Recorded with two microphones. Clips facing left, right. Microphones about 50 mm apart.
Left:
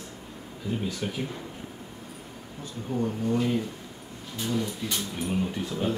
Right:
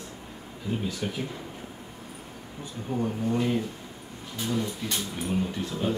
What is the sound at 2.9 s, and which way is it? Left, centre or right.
Speech, centre.